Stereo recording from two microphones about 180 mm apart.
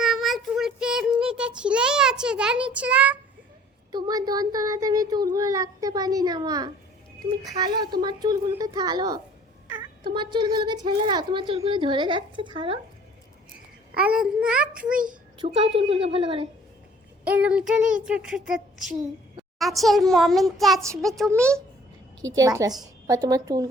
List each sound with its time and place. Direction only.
0.0 s child singing: centre (ahead or behind)
3.9 s speech: 20° right (ahead or behind)
13.9 s speech: 5° right (ahead or behind)
14.9 s a child's voice: 50° right (ahead or behind)
15.4 s a woman's voice: 30° right (ahead or behind)
17.2 s speech: 10° right (ahead or behind)
22.4 s a woman's voice: 20° right (ahead or behind)